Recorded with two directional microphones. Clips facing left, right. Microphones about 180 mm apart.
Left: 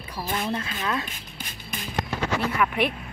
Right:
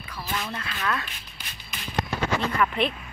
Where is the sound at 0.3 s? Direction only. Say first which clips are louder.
Left 4 dB; 30° left (ahead or behind).